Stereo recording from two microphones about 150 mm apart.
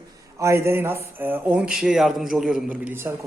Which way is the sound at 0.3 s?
20° right (ahead or behind).